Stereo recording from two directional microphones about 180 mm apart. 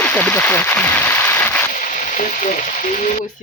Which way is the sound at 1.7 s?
45° left (ahead or behind).